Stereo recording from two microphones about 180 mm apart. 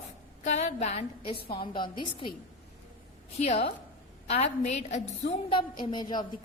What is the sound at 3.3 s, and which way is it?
A woman's voice, 35° left (ahead or behind).